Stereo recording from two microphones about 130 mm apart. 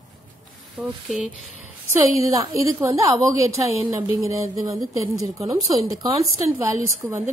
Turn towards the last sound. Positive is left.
turn(degrees=-15)  # may be behind; listen again after turning